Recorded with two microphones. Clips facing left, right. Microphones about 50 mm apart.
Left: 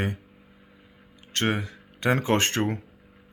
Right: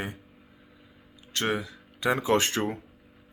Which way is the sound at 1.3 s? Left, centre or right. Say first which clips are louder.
Left 2 dB; left.